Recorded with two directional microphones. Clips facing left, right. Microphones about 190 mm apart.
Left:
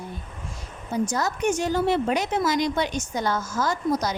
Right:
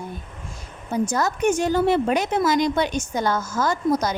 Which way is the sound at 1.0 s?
55° right (ahead or behind).